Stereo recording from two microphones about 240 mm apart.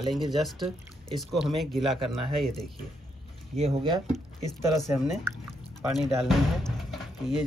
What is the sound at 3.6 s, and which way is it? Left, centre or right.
Speech, right.